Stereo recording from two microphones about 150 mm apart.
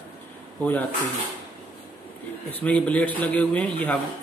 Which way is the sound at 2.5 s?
10° left (ahead or behind).